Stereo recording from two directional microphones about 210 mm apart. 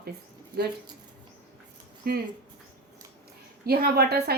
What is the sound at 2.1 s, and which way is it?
Speech, 45° right (ahead or behind).